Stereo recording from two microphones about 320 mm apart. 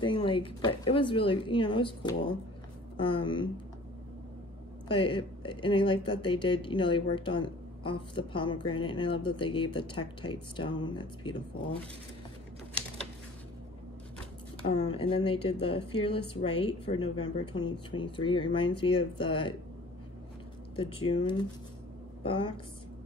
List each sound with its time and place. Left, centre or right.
0.0 s speech: centre
4.8 s speech: centre
14.6 s speech: centre
20.7 s a woman's voice: centre